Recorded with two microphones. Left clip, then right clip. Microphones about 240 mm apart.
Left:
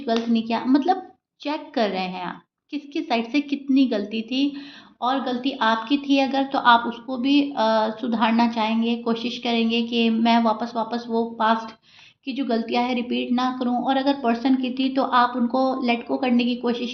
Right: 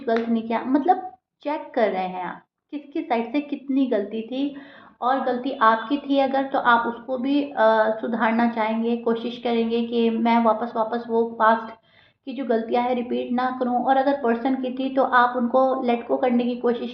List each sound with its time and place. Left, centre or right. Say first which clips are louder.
0.3 s a woman's voice: left 1 dB; left